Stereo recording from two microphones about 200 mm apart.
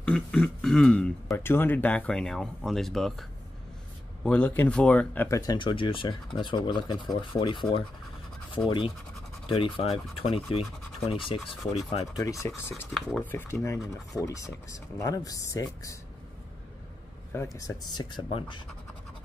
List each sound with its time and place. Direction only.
0.0 s speech: 5° left (ahead or behind); by 10.6 s 30° left (ahead or behind)
11.7 s speech: 30° left (ahead or behind)
12.4 s speech: 10° left (ahead or behind)
17.6 s speech: 20° left (ahead or behind)